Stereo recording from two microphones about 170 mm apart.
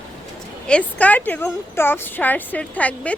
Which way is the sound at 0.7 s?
10° left (ahead or behind).